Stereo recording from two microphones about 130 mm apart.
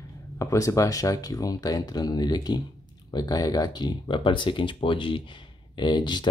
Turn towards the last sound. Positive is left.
turn(degrees=35)  # may be behind; listen again after turning